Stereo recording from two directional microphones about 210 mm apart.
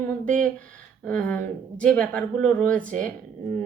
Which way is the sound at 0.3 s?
40° right (ahead or behind).